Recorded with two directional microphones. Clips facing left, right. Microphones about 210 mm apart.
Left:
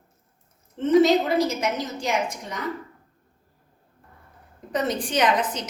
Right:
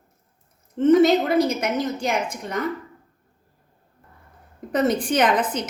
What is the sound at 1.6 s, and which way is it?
Speech, 55° right (ahead or behind).